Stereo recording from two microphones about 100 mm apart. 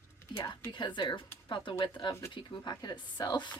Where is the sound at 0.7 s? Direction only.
50° left (ahead or behind).